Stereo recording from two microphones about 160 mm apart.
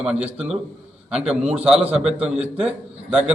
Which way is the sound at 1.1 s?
5° right (ahead or behind).